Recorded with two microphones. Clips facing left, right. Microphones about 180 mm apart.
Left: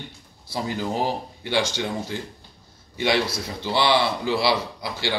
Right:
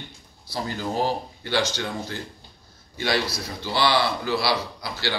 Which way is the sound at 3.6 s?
20° left (ahead or behind).